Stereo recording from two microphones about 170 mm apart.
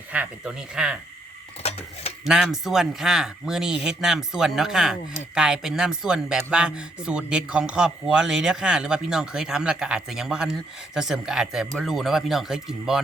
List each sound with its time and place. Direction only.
0.1 s a man's voice: 5° right (ahead or behind)
2.2 s a man's voice: 5° right (ahead or behind)